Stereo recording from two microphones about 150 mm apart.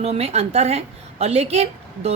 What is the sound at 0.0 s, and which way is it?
A woman's voice, 45° right (ahead or behind).